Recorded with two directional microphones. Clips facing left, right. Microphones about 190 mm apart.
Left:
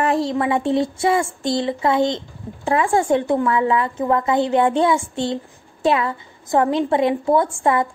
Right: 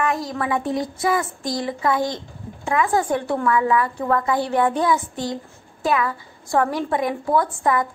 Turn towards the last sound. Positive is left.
turn(degrees=25)  # may be behind; listen again after turning